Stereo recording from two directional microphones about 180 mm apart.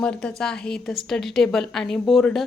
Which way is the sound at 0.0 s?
5° left (ahead or behind).